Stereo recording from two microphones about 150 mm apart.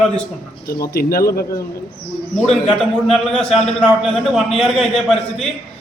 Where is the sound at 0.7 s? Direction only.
90° left.